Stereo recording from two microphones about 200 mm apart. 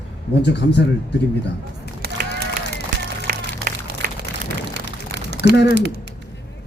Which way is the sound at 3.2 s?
45° right (ahead or behind).